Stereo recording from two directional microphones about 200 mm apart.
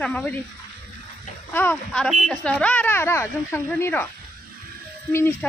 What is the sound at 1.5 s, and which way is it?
Speech, 10° left (ahead or behind).